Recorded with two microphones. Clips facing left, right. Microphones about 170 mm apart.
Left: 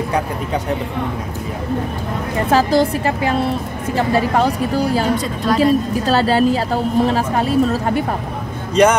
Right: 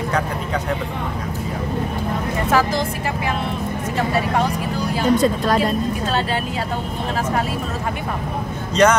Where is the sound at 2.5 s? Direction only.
35° left (ahead or behind).